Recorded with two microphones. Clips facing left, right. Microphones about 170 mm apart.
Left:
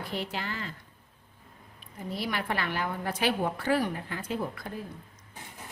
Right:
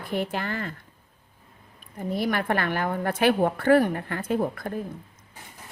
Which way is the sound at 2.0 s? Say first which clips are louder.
Right 7 dB; 50° right (ahead or behind).